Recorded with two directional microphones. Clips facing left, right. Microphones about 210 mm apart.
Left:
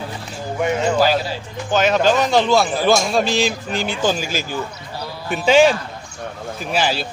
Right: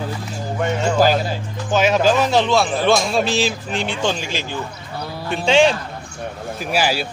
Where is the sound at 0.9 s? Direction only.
50° right (ahead or behind).